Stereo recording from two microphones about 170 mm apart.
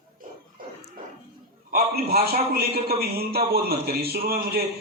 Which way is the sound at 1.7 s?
65° right (ahead or behind).